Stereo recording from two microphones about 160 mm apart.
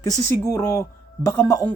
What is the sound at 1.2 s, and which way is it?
Speech, 20° left (ahead or behind).